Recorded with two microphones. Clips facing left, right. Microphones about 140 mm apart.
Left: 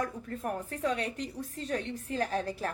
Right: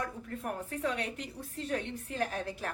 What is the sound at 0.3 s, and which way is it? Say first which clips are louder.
A woman's voice: left 2 dB; 40° left (ahead or behind).